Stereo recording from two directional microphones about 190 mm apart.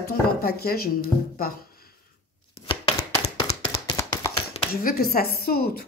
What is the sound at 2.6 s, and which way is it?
Chopping, 25° left (ahead or behind).